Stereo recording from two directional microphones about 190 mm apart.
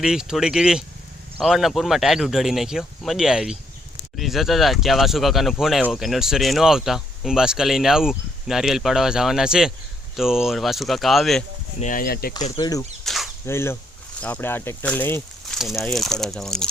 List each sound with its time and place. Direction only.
0.0 s speech: 5° right (ahead or behind)
11.8 s speech: 45° left (ahead or behind)
12.5 s speech: 20° left (ahead or behind)
13.1 s a sound: centre (ahead or behind)
13.4 s speech: 15° left (ahead or behind)
15.4 s speech: centre (ahead or behind)